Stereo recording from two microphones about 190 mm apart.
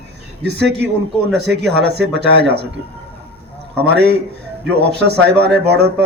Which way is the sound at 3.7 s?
60° right (ahead or behind).